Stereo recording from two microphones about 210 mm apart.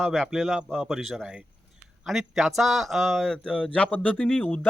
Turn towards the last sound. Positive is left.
turn(degrees=5)  # may be behind; listen again after turning